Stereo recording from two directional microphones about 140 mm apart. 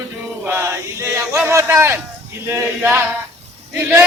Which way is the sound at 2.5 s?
15° right (ahead or behind).